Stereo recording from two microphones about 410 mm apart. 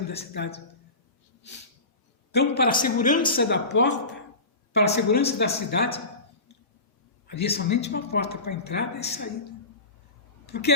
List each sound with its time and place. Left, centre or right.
0.1 s a man's voice: centre
2.3 s a woman's voice: left
3.5 s a woman's voice: left
7.3 s a man's voice: left